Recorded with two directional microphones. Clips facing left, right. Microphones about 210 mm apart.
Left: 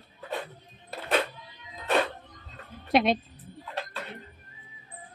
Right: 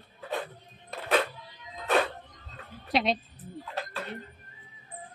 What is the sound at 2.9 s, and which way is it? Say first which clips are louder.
Music: left 4 dB; 50° left (ahead or behind).